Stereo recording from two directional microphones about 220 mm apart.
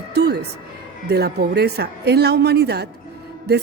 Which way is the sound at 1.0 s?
45° right (ahead or behind).